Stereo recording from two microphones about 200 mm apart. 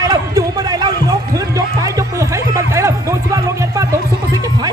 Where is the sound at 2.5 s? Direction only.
15° right (ahead or behind).